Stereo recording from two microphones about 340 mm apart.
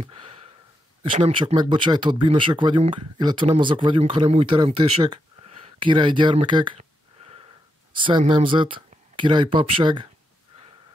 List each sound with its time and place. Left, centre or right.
0.0 s sniff: centre
1.0 s speech: centre